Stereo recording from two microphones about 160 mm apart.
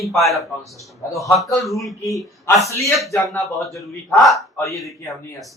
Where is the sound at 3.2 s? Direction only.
Centre (ahead or behind).